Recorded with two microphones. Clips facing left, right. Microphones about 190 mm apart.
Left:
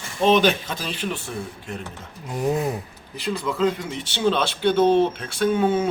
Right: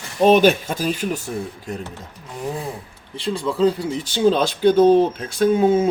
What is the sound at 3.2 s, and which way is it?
Speech, 30° right (ahead or behind).